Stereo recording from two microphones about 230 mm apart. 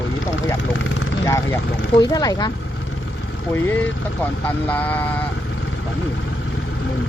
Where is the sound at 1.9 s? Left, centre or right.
Centre.